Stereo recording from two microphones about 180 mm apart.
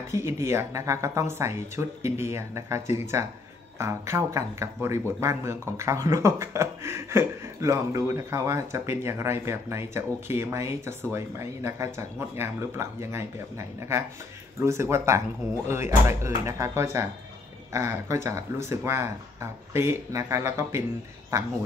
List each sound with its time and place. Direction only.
0.1 s speech: 15° right (ahead or behind)